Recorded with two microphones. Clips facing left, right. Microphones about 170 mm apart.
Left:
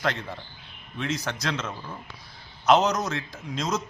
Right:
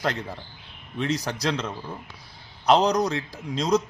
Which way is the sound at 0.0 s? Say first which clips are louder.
Right 1 dB; 35° right (ahead or behind).